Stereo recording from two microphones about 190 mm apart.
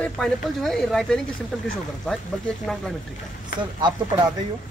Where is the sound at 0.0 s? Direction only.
Centre (ahead or behind).